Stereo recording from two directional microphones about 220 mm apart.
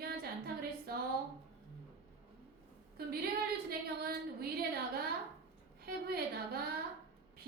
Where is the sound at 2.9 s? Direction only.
45° right (ahead or behind).